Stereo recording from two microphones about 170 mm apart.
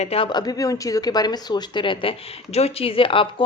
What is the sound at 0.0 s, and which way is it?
Speech, 35° left (ahead or behind).